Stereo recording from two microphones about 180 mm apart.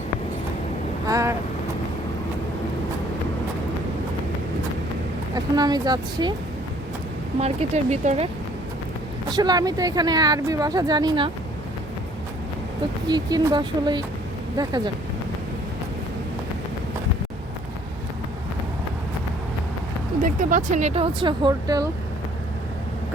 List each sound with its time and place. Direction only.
1.0 s vehicle: 15° right (ahead or behind)
5.3 s speech: 20° right (ahead or behind)
7.3 s speech: 40° right (ahead or behind)
9.3 s speech: 20° right (ahead or behind)
13.1 s speech: 20° right (ahead or behind)
20.2 s speech: 45° right (ahead or behind); by 21.8 s 25° right (ahead or behind)